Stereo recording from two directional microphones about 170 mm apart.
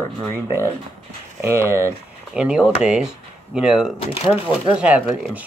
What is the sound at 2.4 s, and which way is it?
Speech, 5° right (ahead or behind).